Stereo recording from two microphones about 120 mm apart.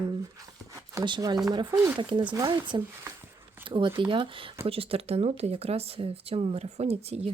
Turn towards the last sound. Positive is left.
turn(degrees=-60)  # may be behind; listen again after turning